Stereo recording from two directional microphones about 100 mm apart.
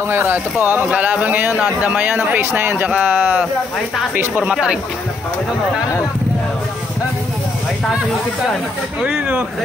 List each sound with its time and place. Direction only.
0.1 s speech: 20° right (ahead or behind)
9.0 s speech: 10° right (ahead or behind)